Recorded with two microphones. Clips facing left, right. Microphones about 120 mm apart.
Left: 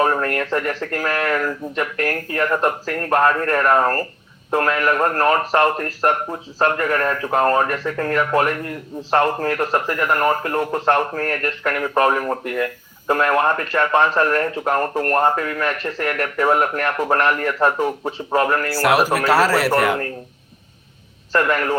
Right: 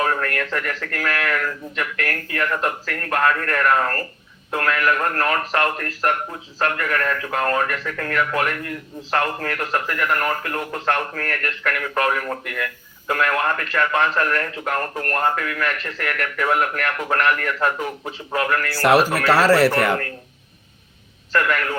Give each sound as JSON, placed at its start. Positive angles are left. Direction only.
{"t": 0.0, "sound": "speech", "side_deg": 30}
{"t": 18.8, "sound": "a man's voice", "side_deg": 10}
{"t": 21.3, "sound": "speech", "side_deg": 30}